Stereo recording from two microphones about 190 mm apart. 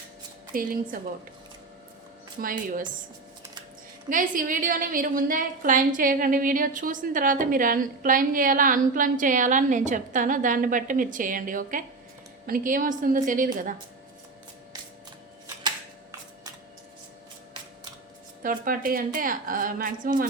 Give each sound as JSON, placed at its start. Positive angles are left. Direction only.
{"t": 0.5, "sound": "a woman's voice", "side_deg": -50}
{"t": 2.4, "sound": "a woman's voice", "side_deg": -45}
{"t": 4.1, "sound": "a woman's voice", "side_deg": -45}
{"t": 18.4, "sound": "a woman's voice", "side_deg": -50}